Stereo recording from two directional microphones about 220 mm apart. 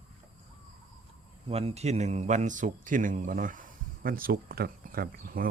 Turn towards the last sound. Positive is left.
turn(degrees=-40)  # may be behind; listen again after turning